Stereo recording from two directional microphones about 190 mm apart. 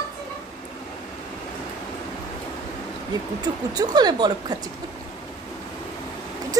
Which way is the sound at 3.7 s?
20° right (ahead or behind).